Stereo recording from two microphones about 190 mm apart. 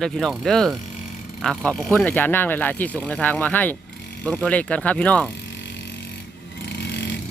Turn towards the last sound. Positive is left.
turn(degrees=60)  # may be behind; listen again after turning